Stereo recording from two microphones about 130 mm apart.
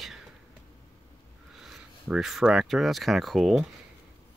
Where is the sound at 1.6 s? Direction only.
5° right (ahead or behind).